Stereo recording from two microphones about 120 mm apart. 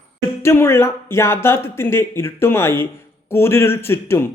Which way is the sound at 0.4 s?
20° left (ahead or behind).